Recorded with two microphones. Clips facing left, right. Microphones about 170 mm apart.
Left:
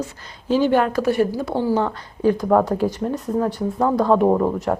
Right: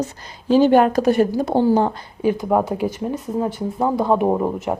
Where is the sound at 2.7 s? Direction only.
Centre (ahead or behind).